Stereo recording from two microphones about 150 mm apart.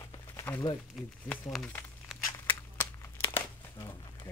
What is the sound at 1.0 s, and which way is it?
Speech, 5° left (ahead or behind).